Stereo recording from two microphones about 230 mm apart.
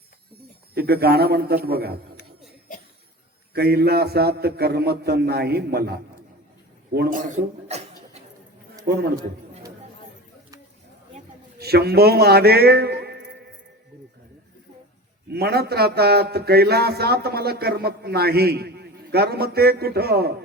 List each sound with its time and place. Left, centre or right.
0.7 s speech: right
3.5 s a man's voice: right
11.6 s a man's voice: right
15.3 s speech: right